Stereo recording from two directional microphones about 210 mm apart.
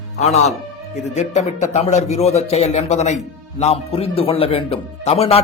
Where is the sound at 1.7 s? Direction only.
30° left (ahead or behind).